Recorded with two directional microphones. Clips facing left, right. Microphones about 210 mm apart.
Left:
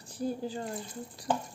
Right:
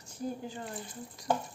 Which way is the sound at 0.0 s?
35° left (ahead or behind).